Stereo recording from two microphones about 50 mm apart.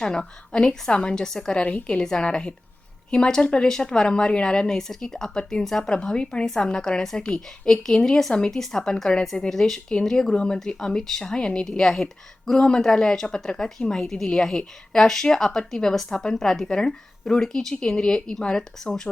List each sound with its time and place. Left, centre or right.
0.0 s speech: centre
1.6 s a woman's voice: left